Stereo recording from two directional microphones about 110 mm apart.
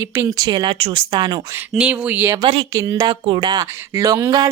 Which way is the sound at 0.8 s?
55° right (ahead or behind).